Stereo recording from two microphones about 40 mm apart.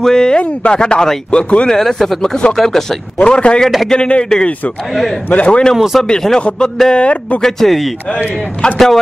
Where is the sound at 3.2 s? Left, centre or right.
Left.